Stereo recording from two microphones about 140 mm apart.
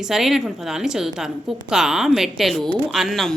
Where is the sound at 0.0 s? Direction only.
5° right (ahead or behind).